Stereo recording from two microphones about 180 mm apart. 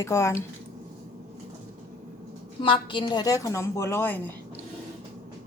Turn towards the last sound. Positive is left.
turn(degrees=10)  # may be behind; listen again after turning